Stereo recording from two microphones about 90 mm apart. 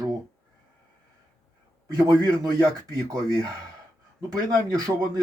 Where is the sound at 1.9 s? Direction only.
45° right (ahead or behind).